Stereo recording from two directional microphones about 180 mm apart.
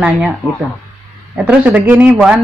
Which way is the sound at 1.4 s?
5° right (ahead or behind).